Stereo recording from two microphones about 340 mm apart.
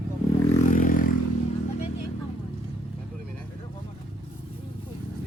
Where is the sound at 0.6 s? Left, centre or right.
Left.